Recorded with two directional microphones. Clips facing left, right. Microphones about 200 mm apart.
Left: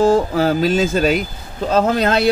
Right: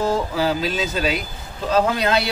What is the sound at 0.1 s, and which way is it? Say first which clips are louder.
Speech: left 6 dB; 50° left (ahead or behind).